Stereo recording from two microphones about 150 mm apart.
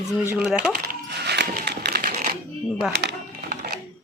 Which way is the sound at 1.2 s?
90° right.